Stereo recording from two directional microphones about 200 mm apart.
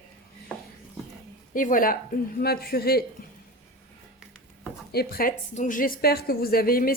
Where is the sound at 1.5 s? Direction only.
40° left (ahead or behind).